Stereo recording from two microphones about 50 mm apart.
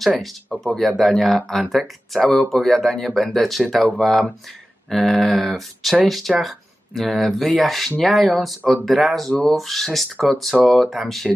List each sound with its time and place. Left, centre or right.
0.2 s speech: centre
9.3 s speech: left
9.6 s speech: centre